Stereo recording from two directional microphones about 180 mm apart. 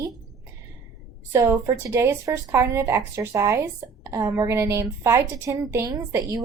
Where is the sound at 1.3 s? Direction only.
15° right (ahead or behind).